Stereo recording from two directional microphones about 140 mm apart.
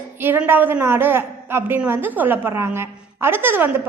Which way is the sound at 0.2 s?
15° right (ahead or behind).